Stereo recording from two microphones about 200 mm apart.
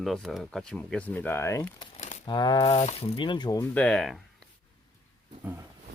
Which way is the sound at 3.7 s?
5° left (ahead or behind).